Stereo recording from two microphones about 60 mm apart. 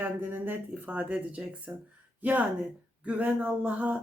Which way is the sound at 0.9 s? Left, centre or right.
Right.